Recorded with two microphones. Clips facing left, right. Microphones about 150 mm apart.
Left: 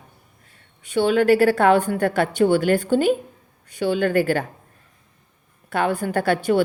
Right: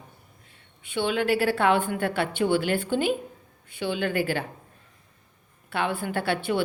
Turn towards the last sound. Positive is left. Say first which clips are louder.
# left 7 dB
turn(degrees=45)  # may be behind; listen again after turning